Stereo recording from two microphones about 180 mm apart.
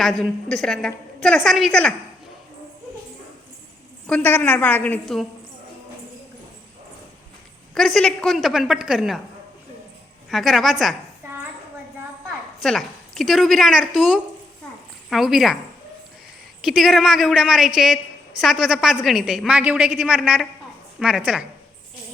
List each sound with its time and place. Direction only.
0.0 s a man's voice: centre (ahead or behind)
4.0 s a woman's voice: 10° left (ahead or behind)
7.7 s a man's voice: centre (ahead or behind)
10.2 s a man's voice: centre (ahead or behind)
12.6 s a man's voice: centre (ahead or behind)
16.6 s a man's voice: centre (ahead or behind)